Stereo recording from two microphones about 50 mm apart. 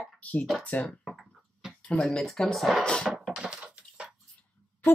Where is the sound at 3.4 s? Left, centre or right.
Centre.